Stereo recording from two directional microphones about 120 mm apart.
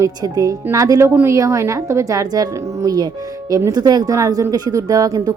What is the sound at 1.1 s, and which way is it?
A woman's voice, 15° right (ahead or behind).